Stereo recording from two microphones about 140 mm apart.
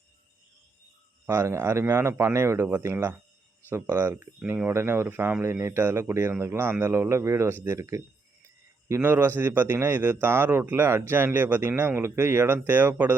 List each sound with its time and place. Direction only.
1.3 s a man's voice: 20° right (ahead or behind)